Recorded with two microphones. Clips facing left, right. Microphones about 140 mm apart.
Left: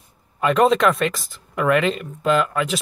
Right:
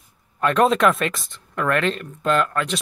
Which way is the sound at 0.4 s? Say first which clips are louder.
Left 1 dB; centre (ahead or behind).